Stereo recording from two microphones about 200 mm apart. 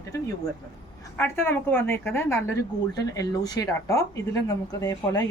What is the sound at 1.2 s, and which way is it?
A woman's voice, 10° left (ahead or behind).